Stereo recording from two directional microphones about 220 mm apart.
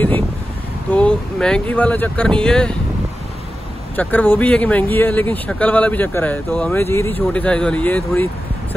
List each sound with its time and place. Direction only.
0.9 s speech: 5° left (ahead or behind)
3.9 s speech: 5° left (ahead or behind)